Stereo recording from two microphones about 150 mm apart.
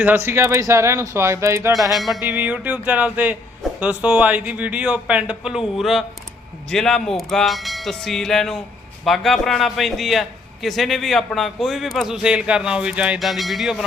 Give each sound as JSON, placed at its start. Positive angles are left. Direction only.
{"t": 0.0, "sound": "speech", "side_deg": -15}
{"t": 1.9, "sound": "a man's voice", "side_deg": 0}
{"t": 2.2, "sound": "a man's voice", "side_deg": -10}